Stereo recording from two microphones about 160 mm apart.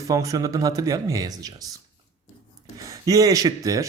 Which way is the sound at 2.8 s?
20° right (ahead or behind).